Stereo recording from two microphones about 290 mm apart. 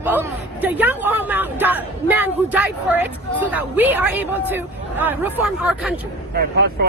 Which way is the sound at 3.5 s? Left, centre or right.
Centre.